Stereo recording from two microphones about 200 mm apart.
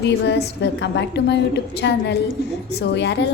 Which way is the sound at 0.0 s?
60° left (ahead or behind).